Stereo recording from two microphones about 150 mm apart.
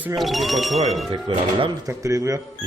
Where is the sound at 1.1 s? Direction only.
35° right (ahead or behind).